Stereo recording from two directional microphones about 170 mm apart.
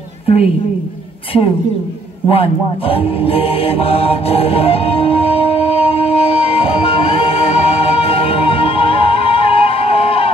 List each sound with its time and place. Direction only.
2.2 s music: 35° left (ahead or behind)